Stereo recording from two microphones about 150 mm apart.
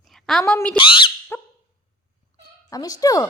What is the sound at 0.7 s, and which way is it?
Speech, 35° left (ahead or behind).